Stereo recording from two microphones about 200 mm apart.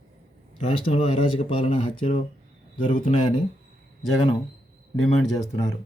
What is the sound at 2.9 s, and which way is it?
Speech, 40° left (ahead or behind).